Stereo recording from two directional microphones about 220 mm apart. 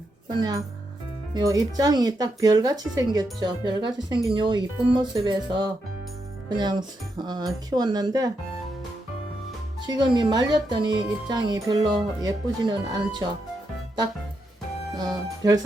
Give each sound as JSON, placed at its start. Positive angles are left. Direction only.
{"t": 0.3, "sound": "speech", "side_deg": -20}
{"t": 9.8, "sound": "speech", "side_deg": -20}
{"t": 14.9, "sound": "speech", "side_deg": -20}